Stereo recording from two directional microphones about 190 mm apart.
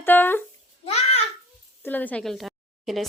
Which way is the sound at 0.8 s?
35° left (ahead or behind).